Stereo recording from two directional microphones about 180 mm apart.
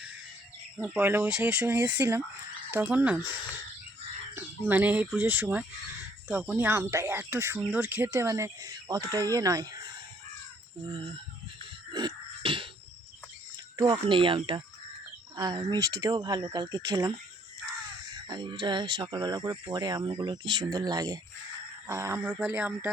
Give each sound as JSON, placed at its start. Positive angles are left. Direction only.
{"t": 0.9, "sound": "speech", "side_deg": -10}
{"t": 4.4, "sound": "speech", "side_deg": -10}
{"t": 11.9, "sound": "music", "side_deg": -25}
{"t": 13.7, "sound": "speech", "side_deg": -25}
{"t": 18.3, "sound": "speech", "side_deg": -25}